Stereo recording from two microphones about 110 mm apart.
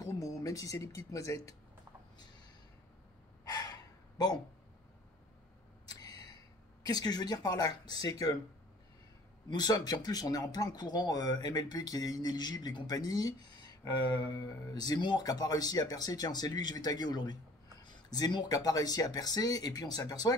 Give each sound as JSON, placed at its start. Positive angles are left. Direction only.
{"t": 0.0, "sound": "speech", "side_deg": 30}
{"t": 3.4, "sound": "gasp", "side_deg": 35}
{"t": 5.9, "sound": "a sound", "side_deg": 35}
{"t": 6.8, "sound": "speech", "side_deg": 35}
{"t": 9.5, "sound": "speech", "side_deg": 40}